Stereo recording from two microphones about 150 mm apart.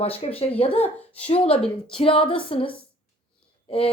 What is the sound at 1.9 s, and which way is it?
Speech, 35° left (ahead or behind).